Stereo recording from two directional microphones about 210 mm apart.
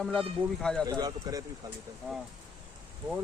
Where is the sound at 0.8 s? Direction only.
20° right (ahead or behind).